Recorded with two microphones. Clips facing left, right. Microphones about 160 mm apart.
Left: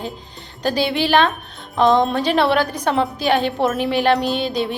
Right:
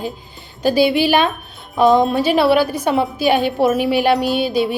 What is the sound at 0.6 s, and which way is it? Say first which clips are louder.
A child's voice: right 5 dB; 10° right (ahead or behind).